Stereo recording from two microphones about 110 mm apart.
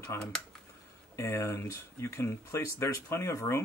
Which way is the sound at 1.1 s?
25° left (ahead or behind).